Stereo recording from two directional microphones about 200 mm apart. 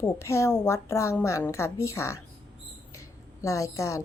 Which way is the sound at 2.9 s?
15° left (ahead or behind).